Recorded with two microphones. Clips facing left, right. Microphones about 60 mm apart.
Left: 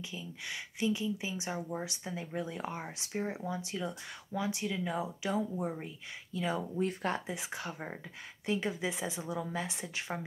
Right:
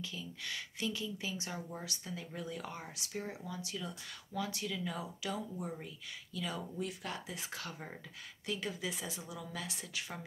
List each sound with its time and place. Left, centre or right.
0.0 s speech: left
6.9 s speech: left
7.3 s speech: left